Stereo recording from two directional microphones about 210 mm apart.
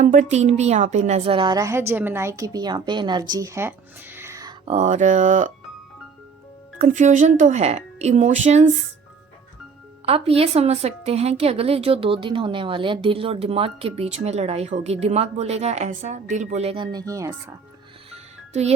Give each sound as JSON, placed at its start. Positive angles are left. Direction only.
{"t": 0.0, "sound": "a woman's voice", "side_deg": -35}
{"t": 4.6, "sound": "speech", "side_deg": -30}
{"t": 6.7, "sound": "speech", "side_deg": -35}
{"t": 10.1, "sound": "a woman's voice", "side_deg": -25}
{"t": 18.1, "sound": "music", "side_deg": -30}